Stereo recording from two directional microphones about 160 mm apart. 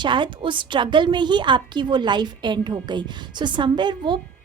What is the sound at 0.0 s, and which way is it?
A woman's voice, 30° right (ahead or behind).